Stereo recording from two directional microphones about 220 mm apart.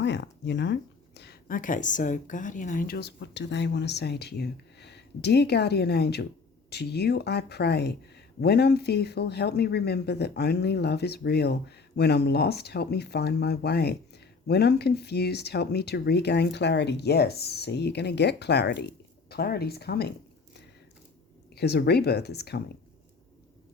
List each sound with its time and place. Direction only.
0.0 s speech: 50° left (ahead or behind)
21.5 s speech: 45° left (ahead or behind)